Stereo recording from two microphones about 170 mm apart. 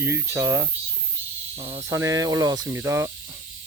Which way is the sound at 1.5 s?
35° right (ahead or behind).